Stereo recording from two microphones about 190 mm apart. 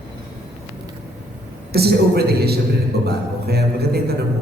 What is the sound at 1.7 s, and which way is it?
A man's voice, 55° right (ahead or behind).